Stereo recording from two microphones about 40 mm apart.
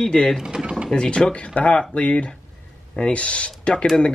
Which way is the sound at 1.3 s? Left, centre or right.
Left.